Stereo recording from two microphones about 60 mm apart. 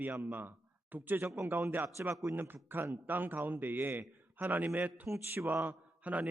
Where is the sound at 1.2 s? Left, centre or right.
Right.